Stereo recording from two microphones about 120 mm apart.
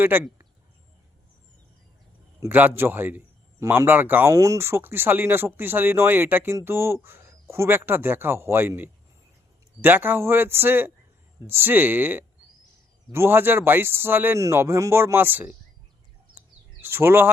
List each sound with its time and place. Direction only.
0.0 s speech: 15° right (ahead or behind)
2.4 s a man's voice: 15° right (ahead or behind)
16.8 s speech: 20° right (ahead or behind)